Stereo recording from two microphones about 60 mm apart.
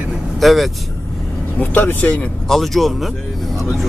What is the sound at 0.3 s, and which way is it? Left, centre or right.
Speech, centre.